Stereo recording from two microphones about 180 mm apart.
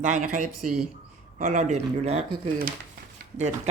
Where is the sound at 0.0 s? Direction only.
45° right (ahead or behind).